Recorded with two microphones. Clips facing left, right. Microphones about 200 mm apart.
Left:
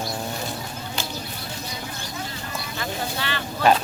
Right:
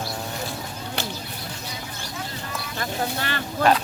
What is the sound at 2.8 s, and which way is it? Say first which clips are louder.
Speech: right 2 dB; 45° right (ahead or behind).